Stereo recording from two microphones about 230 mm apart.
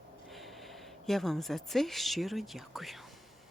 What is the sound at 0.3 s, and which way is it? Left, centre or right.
Speech, centre.